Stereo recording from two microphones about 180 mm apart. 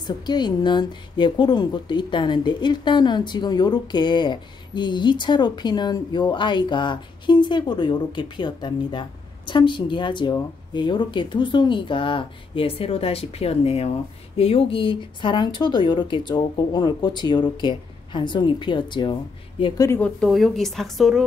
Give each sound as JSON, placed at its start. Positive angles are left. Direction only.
{"t": 0.0, "sound": "speech", "side_deg": 25}
{"t": 20.0, "sound": "speech", "side_deg": 5}